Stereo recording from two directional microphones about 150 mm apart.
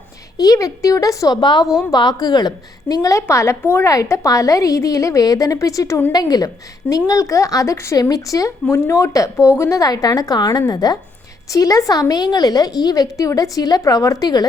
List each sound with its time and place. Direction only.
0.3 s a woman's voice: 25° left (ahead or behind)